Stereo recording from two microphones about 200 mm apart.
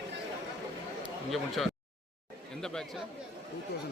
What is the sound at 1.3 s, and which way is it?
Speech, centre (ahead or behind).